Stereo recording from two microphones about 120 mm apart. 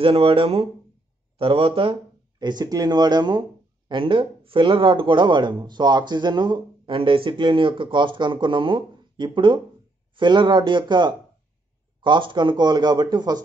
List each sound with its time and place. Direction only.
0.0 s speech: 50° right (ahead or behind)
2.3 s speech: 35° right (ahead or behind)